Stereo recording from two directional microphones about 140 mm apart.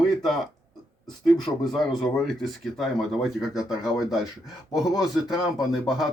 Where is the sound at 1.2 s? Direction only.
Centre (ahead or behind).